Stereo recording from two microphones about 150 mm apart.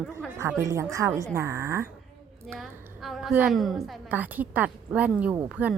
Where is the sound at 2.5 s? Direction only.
Centre (ahead or behind).